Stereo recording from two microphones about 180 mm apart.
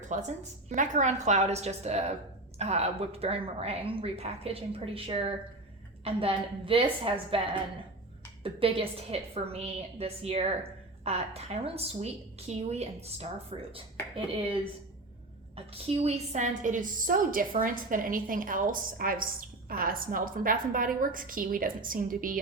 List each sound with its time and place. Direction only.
0.1 s a woman's voice: 45° right (ahead or behind)
15.5 s a woman's voice: 35° right (ahead or behind); by 22.4 s 50° right (ahead or behind)